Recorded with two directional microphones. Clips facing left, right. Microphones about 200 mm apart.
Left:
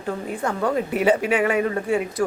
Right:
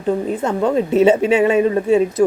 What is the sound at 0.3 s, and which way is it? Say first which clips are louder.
A woman's voice: right 6 dB; 25° right (ahead or behind).